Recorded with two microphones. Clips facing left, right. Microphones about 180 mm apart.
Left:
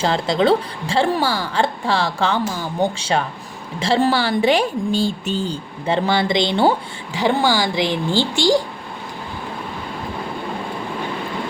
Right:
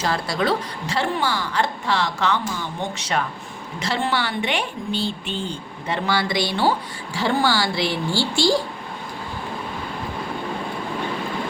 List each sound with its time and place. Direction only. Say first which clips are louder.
0.0 s speech: left 5 dB; 25° left (ahead or behind)